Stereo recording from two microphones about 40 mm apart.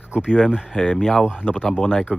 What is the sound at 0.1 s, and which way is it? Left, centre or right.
Speech, centre.